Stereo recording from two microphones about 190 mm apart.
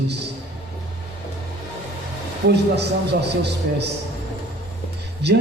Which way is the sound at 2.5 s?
60° right (ahead or behind).